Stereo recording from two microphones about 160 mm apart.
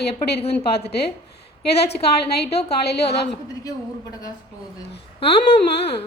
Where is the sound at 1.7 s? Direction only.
90° left.